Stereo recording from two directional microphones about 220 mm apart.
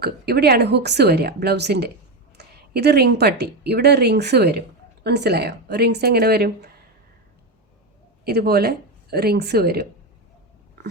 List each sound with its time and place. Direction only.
0.0 s a woman's voice: 45° right (ahead or behind)
2.4 s a sound: 50° right (ahead or behind)
2.7 s a woman's voice: 45° right (ahead or behind)
8.2 s a woman's voice: 45° right (ahead or behind)